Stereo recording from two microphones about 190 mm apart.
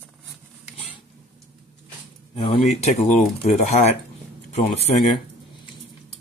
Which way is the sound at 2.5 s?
35° left (ahead or behind).